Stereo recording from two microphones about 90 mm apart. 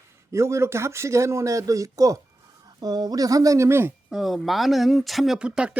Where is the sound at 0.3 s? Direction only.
35° right (ahead or behind).